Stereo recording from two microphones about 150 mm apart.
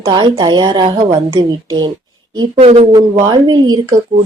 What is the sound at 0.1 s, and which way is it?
Speech, 30° right (ahead or behind).